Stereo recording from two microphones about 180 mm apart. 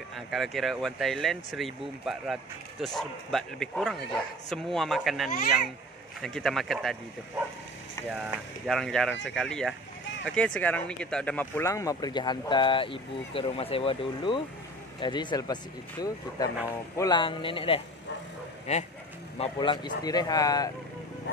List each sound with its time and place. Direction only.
0.1 s a man's voice: centre (ahead or behind)
8.6 s a man's voice: centre (ahead or behind); by 20.7 s 20° left (ahead or behind)